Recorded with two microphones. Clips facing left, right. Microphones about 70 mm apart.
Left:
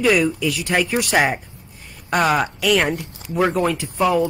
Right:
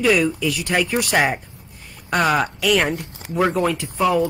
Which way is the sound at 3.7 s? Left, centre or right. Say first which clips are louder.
Even; centre.